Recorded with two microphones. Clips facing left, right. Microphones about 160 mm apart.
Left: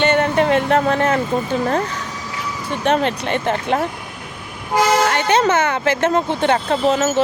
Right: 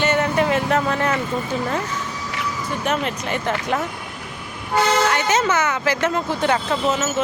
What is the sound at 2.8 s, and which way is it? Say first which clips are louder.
Speech: left 7 dB; 25° left (ahead or behind).